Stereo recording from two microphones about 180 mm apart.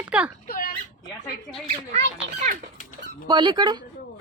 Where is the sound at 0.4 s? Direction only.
55° left (ahead or behind).